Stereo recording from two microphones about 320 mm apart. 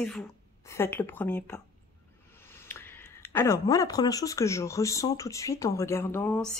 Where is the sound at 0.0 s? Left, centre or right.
Centre.